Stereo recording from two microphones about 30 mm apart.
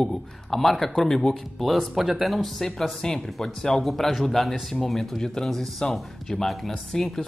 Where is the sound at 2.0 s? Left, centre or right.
Centre.